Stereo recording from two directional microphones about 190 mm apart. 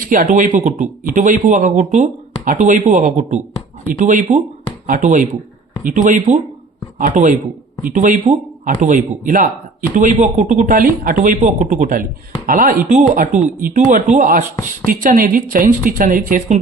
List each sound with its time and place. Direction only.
0.0 s speech: 45° right (ahead or behind)